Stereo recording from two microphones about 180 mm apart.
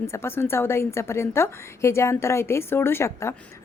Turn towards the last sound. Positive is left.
turn(degrees=15)  # may be behind; listen again after turning